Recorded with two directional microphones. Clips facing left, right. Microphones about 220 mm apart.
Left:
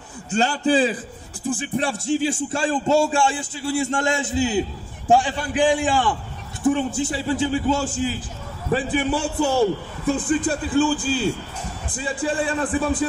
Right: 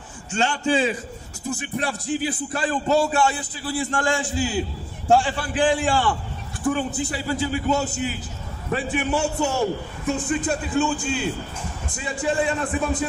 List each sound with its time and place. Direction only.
0.3 s a man's voice: 35° left (ahead or behind); by 6.1 s 15° left (ahead or behind)
6.6 s a man's voice: 25° left (ahead or behind)